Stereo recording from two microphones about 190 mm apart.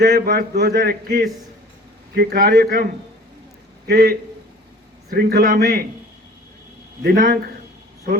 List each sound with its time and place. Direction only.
0.0 s a man's voice: 55° right (ahead or behind)
7.0 s a man's voice: 55° right (ahead or behind)